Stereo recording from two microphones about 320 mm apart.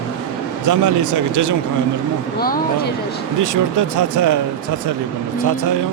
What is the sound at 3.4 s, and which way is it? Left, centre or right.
Speech, right.